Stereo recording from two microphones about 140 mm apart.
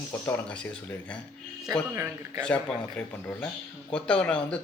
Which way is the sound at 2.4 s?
5° left (ahead or behind).